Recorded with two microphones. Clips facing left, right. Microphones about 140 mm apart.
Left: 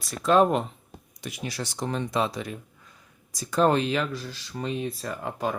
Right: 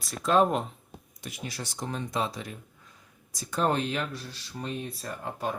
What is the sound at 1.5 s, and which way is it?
Speech, 85° left.